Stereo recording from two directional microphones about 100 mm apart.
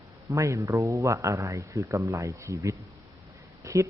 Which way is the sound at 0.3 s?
30° right (ahead or behind).